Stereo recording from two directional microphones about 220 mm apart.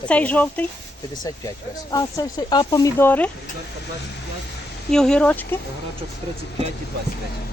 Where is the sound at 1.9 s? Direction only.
15° left (ahead or behind).